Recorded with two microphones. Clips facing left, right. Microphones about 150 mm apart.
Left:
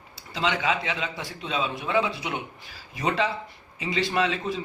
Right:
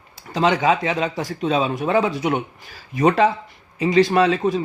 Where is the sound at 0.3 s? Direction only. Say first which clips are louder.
Right 8 dB; 45° right (ahead or behind).